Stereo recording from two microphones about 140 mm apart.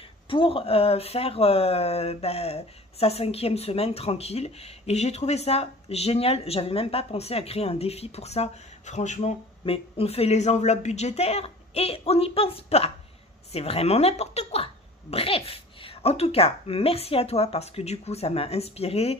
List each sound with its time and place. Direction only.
0.3 s speech: 40° left (ahead or behind); by 9.3 s 55° left (ahead or behind)
9.7 s speech: 45° left (ahead or behind)